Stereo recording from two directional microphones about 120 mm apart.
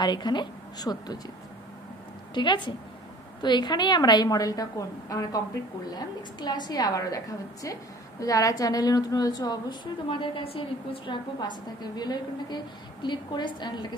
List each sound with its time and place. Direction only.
0.0 s a woman's voice: 35° left (ahead or behind)
2.3 s a woman's voice: 40° left (ahead or behind)